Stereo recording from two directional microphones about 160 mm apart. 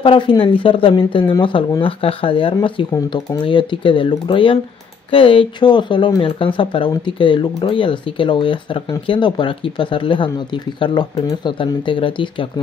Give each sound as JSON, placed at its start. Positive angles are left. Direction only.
{"t": 0.0, "sound": "speech", "side_deg": 30}